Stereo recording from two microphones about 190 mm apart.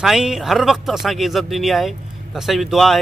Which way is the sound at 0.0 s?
Centre (ahead or behind).